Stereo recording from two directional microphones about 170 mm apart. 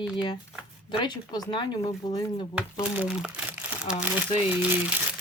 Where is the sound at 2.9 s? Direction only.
5° right (ahead or behind).